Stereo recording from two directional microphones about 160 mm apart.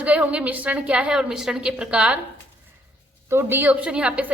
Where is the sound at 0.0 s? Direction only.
10° right (ahead or behind).